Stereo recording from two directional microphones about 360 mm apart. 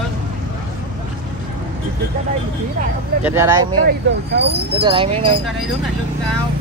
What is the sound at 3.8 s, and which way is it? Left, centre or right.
Speech, right.